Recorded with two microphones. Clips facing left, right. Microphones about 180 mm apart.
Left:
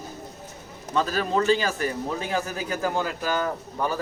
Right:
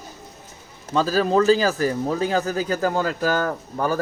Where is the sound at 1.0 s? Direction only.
35° right (ahead or behind).